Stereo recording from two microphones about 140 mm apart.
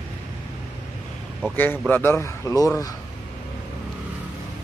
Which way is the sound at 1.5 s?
15° left (ahead or behind).